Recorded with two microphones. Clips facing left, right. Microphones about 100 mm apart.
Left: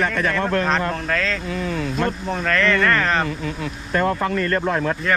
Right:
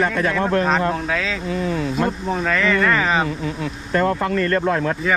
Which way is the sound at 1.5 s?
35° right (ahead or behind).